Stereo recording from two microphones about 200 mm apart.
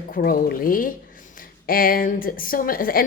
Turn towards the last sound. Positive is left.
turn(degrees=45)  # may be behind; listen again after turning